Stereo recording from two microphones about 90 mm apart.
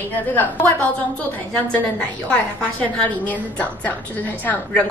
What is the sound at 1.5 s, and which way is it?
A woman's voice, 15° left (ahead or behind).